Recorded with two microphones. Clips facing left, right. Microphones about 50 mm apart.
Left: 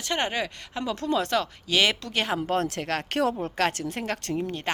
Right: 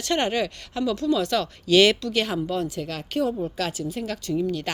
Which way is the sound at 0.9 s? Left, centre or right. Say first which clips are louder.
Right 1 dB; left.